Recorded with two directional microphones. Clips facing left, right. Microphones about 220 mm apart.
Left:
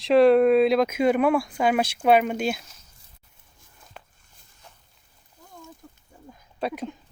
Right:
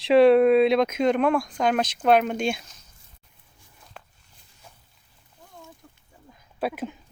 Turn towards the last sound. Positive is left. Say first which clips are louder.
# right 1 dB
turn(degrees=-5)  # may be behind; listen again after turning